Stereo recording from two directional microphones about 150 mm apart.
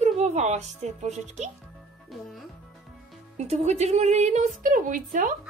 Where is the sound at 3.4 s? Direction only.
45° right (ahead or behind).